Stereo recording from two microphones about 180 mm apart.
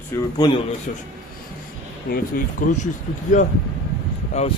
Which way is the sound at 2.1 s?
50° left (ahead or behind).